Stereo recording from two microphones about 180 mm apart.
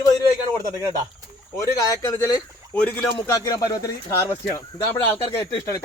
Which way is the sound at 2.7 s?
5° left (ahead or behind).